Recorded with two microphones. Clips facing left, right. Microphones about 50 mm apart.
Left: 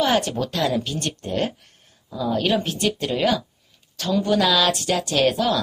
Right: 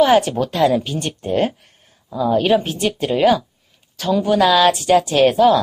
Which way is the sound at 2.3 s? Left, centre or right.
Centre.